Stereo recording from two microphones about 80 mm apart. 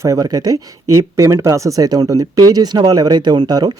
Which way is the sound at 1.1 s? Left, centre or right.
Right.